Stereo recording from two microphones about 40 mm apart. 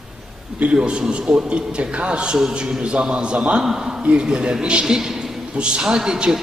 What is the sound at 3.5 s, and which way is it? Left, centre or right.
Speech, centre.